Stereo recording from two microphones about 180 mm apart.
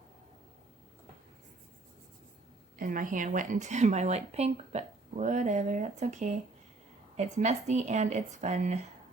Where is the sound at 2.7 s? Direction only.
50° right (ahead or behind).